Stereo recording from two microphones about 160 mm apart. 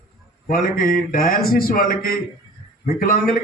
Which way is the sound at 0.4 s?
60° left (ahead or behind).